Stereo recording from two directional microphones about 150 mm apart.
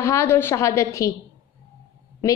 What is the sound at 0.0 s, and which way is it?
A woman's voice, 20° left (ahead or behind).